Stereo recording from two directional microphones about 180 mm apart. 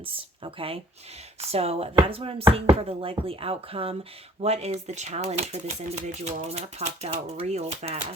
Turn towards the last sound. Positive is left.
turn(degrees=-35)  # may be behind; listen again after turning